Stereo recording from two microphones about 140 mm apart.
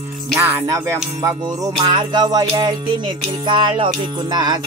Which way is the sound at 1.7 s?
35° right (ahead or behind).